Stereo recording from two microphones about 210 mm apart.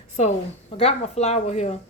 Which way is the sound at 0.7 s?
30° left (ahead or behind).